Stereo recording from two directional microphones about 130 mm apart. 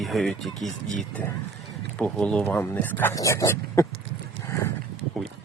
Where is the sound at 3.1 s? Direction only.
25° left (ahead or behind).